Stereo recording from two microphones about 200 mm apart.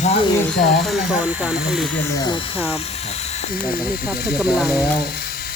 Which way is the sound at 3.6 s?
50° left (ahead or behind).